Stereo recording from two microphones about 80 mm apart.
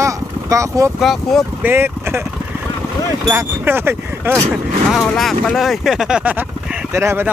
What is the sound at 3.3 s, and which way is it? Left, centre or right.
Speech, right.